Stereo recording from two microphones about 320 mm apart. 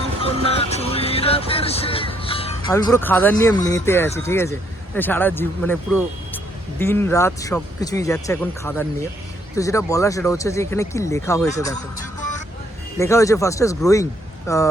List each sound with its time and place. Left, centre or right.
0.2 s speech: centre
13.0 s speech: centre